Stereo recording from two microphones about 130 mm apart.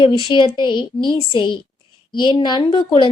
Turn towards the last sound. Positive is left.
turn(degrees=40)  # may be behind; listen again after turning